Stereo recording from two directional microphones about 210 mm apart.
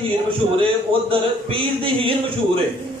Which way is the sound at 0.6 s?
25° right (ahead or behind).